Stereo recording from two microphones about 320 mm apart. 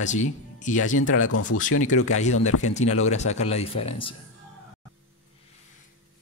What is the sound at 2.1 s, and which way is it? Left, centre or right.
Speech, left.